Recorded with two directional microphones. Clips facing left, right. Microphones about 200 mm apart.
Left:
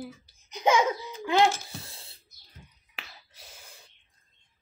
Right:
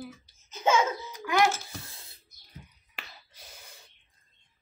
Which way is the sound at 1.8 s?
30° left (ahead or behind).